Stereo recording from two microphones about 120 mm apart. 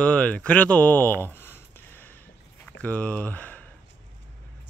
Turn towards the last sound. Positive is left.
turn(degrees=15)  # may be behind; listen again after turning